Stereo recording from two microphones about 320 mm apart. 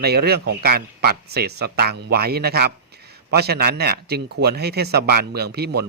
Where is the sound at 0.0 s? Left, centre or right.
Right.